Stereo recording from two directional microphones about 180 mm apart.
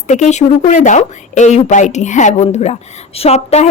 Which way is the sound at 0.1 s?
40° left (ahead or behind).